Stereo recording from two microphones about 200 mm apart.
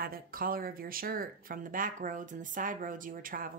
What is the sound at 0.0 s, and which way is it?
Speech, 45° right (ahead or behind).